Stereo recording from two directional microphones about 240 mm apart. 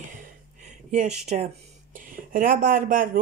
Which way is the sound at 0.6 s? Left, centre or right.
Right.